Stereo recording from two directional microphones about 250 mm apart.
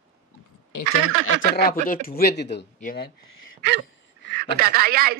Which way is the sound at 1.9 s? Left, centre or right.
Left.